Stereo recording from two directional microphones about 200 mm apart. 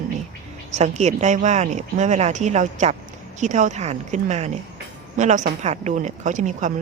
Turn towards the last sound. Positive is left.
turn(degrees=-40)  # may be behind; listen again after turning